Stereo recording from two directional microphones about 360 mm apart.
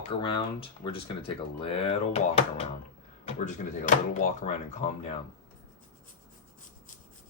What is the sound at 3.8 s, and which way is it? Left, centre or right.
Speech, left.